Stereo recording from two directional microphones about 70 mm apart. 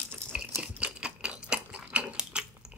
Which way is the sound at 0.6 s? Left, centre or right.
Centre.